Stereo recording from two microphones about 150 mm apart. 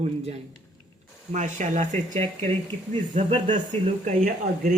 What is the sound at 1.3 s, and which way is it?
Speech, 55° right (ahead or behind).